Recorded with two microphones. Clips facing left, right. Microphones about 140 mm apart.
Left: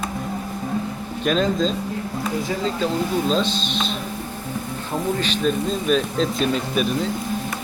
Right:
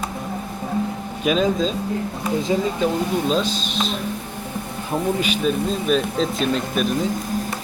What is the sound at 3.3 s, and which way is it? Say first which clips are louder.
Speech: even; 5° right (ahead or behind).